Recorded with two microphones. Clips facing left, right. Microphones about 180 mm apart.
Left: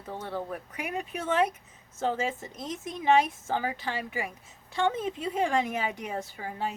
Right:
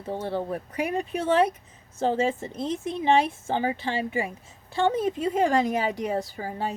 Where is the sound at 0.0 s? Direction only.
30° right (ahead or behind).